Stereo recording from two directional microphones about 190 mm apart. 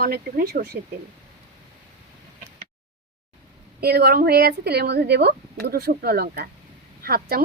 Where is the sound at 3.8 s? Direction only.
55° right (ahead or behind).